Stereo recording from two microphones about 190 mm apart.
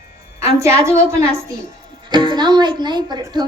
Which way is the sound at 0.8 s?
15° right (ahead or behind).